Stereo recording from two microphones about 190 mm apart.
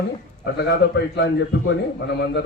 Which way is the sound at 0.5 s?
60° left (ahead or behind).